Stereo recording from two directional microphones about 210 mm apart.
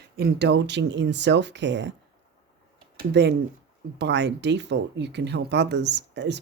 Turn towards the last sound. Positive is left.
turn(degrees=-55)  # may be behind; listen again after turning